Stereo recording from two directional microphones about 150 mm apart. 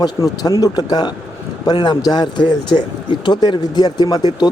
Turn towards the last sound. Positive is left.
turn(degrees=30)  # may be behind; listen again after turning